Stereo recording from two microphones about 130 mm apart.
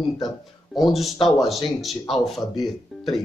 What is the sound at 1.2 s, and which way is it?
Speech, centre (ahead or behind).